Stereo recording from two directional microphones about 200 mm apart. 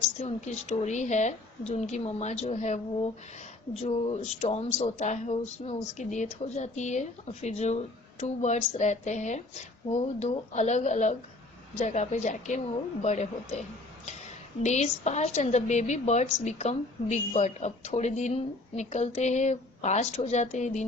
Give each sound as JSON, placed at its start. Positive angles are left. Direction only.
{"t": 0.2, "sound": "a woman's voice", "side_deg": 35}